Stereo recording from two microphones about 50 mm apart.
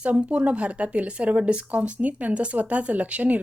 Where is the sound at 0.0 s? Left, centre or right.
Right.